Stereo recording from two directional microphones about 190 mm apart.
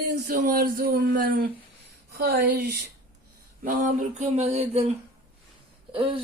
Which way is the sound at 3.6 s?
45° right (ahead or behind).